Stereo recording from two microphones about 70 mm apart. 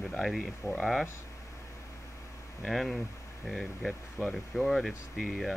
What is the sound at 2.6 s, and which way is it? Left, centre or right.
Speech, centre.